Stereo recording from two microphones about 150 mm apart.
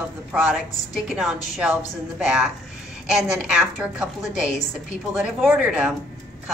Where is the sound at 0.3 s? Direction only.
5° right (ahead or behind).